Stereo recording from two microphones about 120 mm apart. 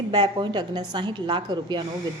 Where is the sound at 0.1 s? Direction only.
40° right (ahead or behind).